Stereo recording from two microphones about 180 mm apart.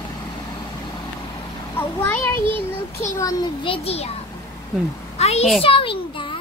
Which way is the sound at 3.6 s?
30° left (ahead or behind).